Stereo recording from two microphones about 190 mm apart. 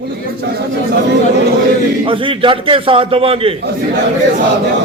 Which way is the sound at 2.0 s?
25° right (ahead or behind).